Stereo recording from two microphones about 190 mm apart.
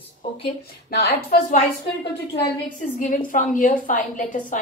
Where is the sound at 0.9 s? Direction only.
55° left (ahead or behind).